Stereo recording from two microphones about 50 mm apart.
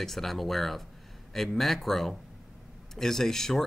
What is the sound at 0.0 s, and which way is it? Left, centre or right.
Speech, centre.